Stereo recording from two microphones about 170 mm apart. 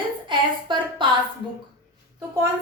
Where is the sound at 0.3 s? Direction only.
30° right (ahead or behind).